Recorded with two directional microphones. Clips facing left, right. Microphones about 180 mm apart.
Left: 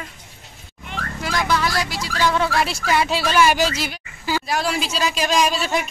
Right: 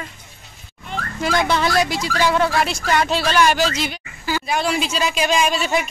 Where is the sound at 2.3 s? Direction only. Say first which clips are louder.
Right 2 dB; centre (ahead or behind).